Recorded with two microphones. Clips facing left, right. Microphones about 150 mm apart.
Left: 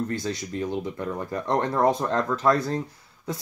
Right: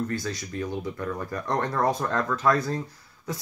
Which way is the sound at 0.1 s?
25° left (ahead or behind).